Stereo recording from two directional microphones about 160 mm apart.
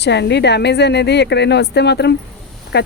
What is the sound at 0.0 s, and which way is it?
Speech, 90° left.